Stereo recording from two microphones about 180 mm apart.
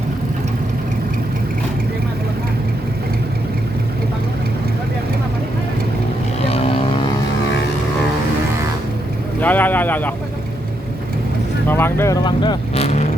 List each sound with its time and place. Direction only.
9.4 s vehicle: 10° left (ahead or behind)
11.7 s speech: 10° left (ahead or behind); by 13.1 s 35° left (ahead or behind)